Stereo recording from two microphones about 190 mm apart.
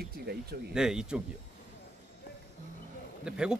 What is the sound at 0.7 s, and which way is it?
Speech, 5° right (ahead or behind).